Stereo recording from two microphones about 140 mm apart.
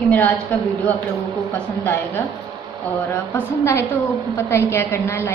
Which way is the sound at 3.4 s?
15° left (ahead or behind).